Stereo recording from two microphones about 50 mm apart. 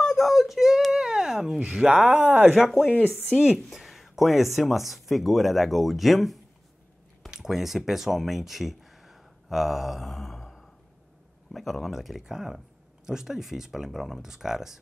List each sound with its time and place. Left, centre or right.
0.0 s a sound: centre
2.0 s speech: right
2.5 s speech: centre
3.7 s speech: centre
7.2 s a sound: centre
11.5 s speech: centre